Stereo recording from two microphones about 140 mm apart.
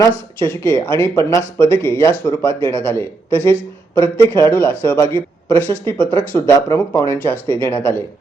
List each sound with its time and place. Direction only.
0.6 s speech: 15° left (ahead or behind)